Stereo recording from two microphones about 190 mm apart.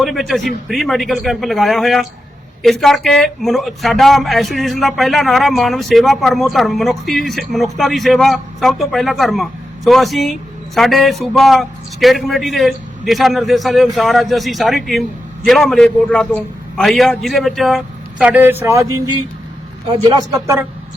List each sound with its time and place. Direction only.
0.0 s a man's voice: centre (ahead or behind); by 20.7 s 15° right (ahead or behind)